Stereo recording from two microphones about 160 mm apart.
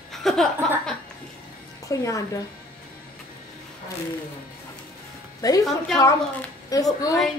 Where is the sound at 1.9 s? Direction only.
20° left (ahead or behind).